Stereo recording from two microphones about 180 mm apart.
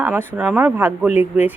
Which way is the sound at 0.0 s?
10° right (ahead or behind).